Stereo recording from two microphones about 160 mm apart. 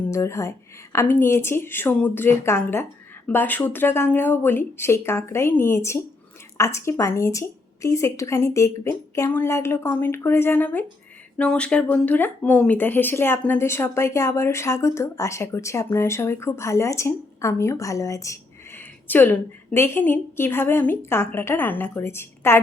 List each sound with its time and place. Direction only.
0.1 s speech: 20° left (ahead or behind)